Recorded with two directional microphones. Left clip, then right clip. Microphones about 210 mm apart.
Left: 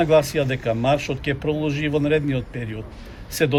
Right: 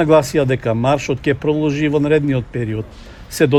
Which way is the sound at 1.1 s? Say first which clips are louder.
Right 7 dB; 90° right.